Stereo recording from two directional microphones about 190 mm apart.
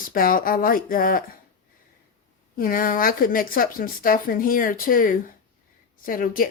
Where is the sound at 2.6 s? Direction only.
45° left (ahead or behind).